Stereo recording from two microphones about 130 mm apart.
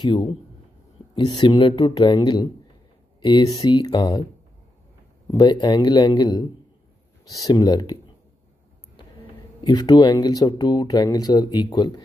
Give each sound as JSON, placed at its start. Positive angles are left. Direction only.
{"t": 0.0, "sound": "speech", "side_deg": 40}
{"t": 5.3, "sound": "speech", "side_deg": 35}
{"t": 9.6, "sound": "speech", "side_deg": 35}